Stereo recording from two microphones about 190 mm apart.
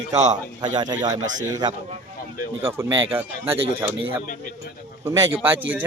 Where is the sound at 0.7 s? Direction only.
20° right (ahead or behind).